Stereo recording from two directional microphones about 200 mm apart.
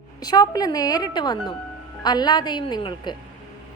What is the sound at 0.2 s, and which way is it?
A woman's voice, 20° left (ahead or behind).